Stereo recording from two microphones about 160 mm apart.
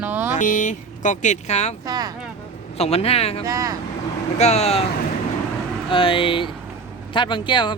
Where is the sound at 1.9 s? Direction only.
25° right (ahead or behind).